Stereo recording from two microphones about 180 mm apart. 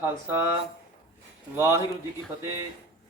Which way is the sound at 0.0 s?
10° right (ahead or behind).